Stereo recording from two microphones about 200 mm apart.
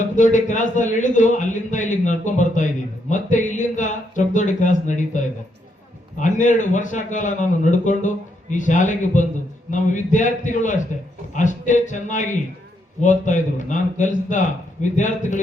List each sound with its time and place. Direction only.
0.0 s a man's voice: 40° left (ahead or behind)